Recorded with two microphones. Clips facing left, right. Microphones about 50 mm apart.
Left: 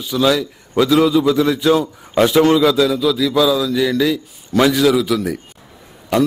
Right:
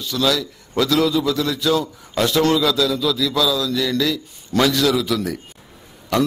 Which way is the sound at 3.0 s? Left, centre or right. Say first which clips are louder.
Left 4 dB; centre.